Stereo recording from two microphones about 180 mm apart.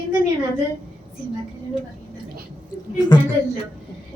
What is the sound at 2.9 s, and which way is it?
Speech, 20° left (ahead or behind).